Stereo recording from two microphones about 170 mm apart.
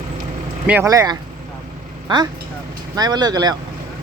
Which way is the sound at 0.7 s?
15° right (ahead or behind).